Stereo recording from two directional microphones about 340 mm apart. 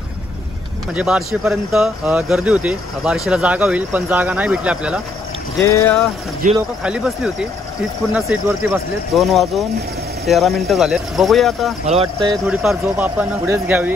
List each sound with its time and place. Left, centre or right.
0.9 s speech: centre
5.6 s speech: centre
11.8 s speech: centre
12.4 s speech: centre